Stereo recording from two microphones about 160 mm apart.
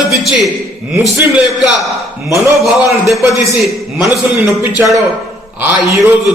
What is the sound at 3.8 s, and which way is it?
A man's voice, 15° right (ahead or behind).